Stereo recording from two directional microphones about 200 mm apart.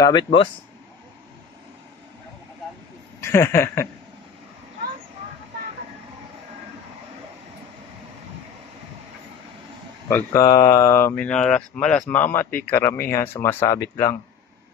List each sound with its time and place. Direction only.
0.0 s speech: 20° left (ahead or behind)
3.2 s speech: 15° left (ahead or behind)
10.0 s speech: 15° left (ahead or behind)